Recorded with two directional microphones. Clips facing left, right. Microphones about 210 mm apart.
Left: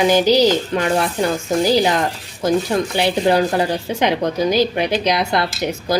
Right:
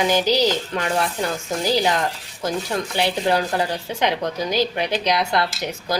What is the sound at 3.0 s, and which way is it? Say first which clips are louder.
Speech: left 4 dB; 15° left (ahead or behind).